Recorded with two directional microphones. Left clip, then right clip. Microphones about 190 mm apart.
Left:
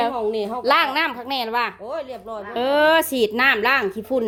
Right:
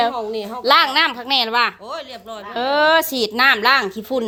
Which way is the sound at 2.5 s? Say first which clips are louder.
Right 1 dB; 20° left (ahead or behind).